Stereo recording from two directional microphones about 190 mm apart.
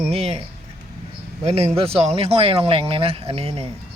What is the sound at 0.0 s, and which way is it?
Speech, 30° right (ahead or behind).